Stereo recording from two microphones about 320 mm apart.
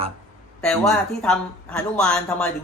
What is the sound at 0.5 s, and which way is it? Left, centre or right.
A woman's voice, centre.